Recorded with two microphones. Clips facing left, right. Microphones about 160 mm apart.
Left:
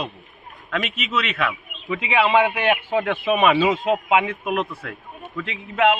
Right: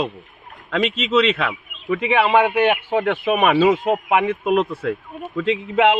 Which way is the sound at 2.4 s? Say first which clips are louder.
Right 3 dB; centre (ahead or behind).